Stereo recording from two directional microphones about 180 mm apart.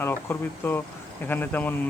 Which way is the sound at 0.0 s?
10° left (ahead or behind).